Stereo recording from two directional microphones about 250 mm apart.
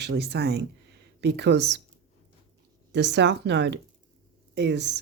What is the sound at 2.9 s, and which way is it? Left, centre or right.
Speech, right.